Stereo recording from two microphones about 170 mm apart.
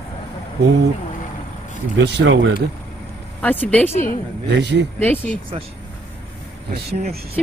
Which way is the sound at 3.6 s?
10° left (ahead or behind).